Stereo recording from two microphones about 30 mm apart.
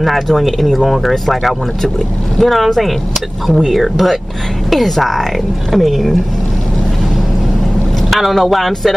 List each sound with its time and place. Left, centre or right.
0.0 s speech: centre
8.1 s speech: centre